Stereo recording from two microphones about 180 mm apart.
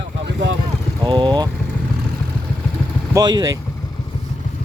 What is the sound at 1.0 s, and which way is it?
Speech, 25° right (ahead or behind).